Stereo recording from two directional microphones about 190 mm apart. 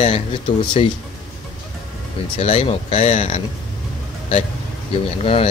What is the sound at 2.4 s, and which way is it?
Speech, 30° left (ahead or behind).